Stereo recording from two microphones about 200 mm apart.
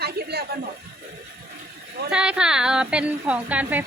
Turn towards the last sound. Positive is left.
turn(degrees=-5)  # may be behind; listen again after turning